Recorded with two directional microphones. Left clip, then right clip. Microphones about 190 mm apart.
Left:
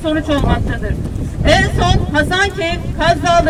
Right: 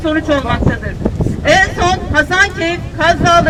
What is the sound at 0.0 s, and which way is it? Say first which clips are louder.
Speech: right 2 dB; 25° right (ahead or behind).